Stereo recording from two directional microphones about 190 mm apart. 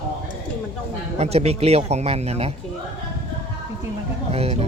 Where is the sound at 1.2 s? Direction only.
35° right (ahead or behind).